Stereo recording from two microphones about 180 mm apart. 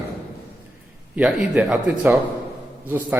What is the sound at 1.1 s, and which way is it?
Speech, 5° right (ahead or behind).